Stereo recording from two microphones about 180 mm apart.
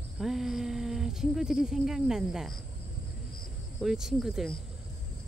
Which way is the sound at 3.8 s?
Centre (ahead or behind).